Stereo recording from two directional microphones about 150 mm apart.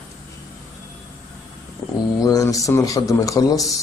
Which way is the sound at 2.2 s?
25° left (ahead or behind).